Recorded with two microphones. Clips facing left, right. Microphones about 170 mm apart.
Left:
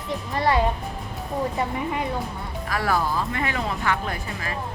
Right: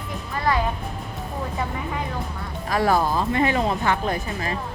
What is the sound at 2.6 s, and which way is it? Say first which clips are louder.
Speech: right 4 dB; 20° right (ahead or behind).